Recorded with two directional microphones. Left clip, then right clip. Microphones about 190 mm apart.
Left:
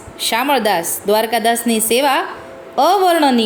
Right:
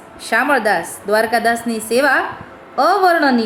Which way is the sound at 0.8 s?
25° left (ahead or behind).